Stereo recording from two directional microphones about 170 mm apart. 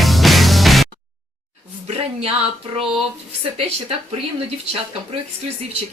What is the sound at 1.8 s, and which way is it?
Speech, 35° right (ahead or behind).